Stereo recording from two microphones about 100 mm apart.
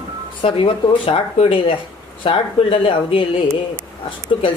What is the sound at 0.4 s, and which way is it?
Speech, 65° left (ahead or behind).